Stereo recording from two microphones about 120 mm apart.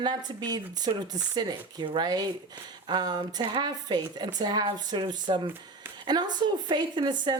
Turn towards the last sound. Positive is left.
turn(degrees=-40)  # may be behind; listen again after turning